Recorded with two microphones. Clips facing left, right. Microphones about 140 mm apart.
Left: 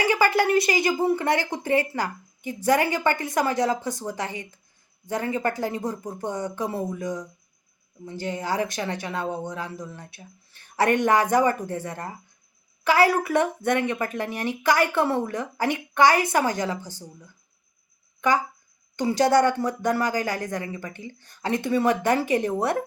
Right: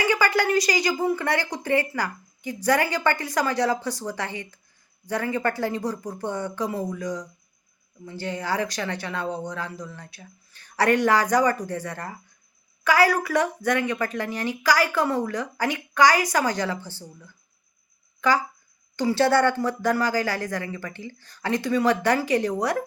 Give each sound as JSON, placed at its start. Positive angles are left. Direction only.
{"t": 0.3, "sound": "a woman's voice", "side_deg": 25}